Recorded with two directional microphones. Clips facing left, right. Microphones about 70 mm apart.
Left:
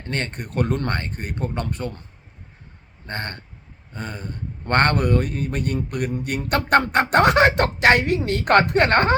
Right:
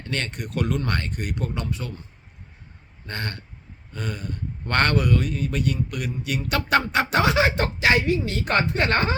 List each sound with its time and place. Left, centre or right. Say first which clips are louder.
0.1 s a man's voice: left 1 dB; left
3.1 s a man's voice: left 2 dB; left
6.2 s a sound: left 3 dB; left
6.9 s speech: left 5 dB; left